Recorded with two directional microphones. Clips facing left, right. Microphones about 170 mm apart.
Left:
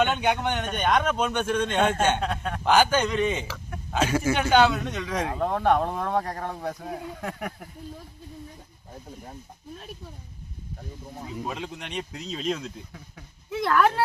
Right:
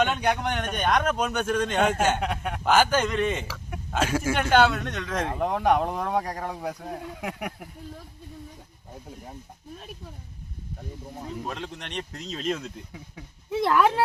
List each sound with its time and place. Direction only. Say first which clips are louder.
0.0 s speech: left 1 dB; centre (ahead or behind)
2.2 s speech: even; 15° right (ahead or behind)
2.6 s speech: left 1 dB; centre (ahead or behind)
5.4 s speech: even; 10° right (ahead or behind)
6.7 s speech: left 1 dB; 5° left (ahead or behind)
7.2 s speech: even; 10° right (ahead or behind)
11.1 s speech: left 1 dB; centre (ahead or behind)
13.5 s speech: right 2 dB; 30° right (ahead or behind)
13.7 s speech: even; 5° right (ahead or behind)